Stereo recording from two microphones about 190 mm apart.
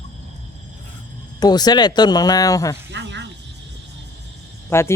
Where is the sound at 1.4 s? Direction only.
20° left (ahead or behind).